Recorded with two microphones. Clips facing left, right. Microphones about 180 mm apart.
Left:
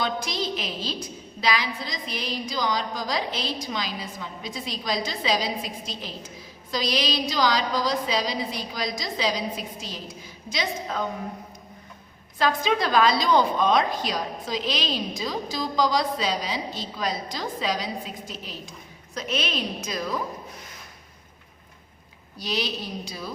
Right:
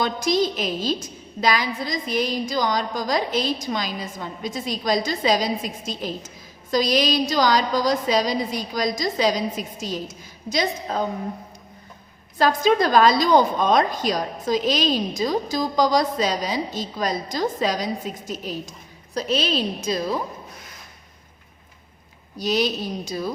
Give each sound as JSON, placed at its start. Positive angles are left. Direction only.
{"t": 0.0, "sound": "a woman's voice", "side_deg": -45}
{"t": 12.4, "sound": "a woman's voice", "side_deg": -40}
{"t": 22.4, "sound": "a woman's voice", "side_deg": -45}